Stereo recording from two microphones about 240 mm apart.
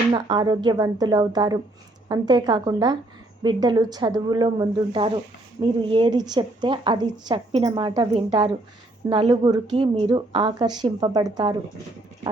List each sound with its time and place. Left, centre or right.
0.1 s a woman's voice: centre